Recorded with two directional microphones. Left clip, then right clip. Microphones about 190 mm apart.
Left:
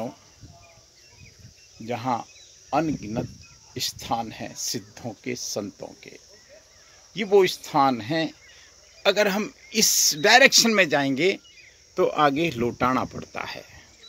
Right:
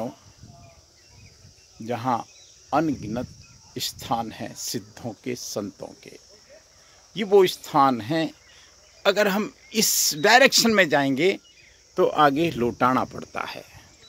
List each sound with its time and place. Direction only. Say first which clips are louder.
1.9 s speech: right 1 dB; 25° right (ahead or behind)